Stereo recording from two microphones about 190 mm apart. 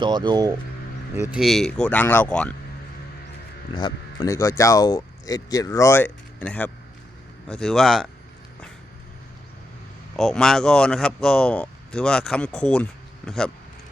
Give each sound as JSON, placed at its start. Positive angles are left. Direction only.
{"t": 0.0, "sound": "speech", "side_deg": -25}
{"t": 1.3, "sound": "speech", "side_deg": 0}
{"t": 3.8, "sound": "speech", "side_deg": 20}
{"t": 10.2, "sound": "speech", "side_deg": 0}